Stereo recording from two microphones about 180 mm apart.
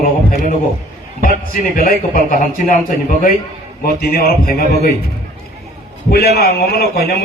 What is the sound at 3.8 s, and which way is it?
A man's voice, 55° left (ahead or behind).